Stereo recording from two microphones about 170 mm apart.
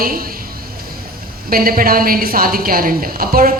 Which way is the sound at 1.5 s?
60° right (ahead or behind).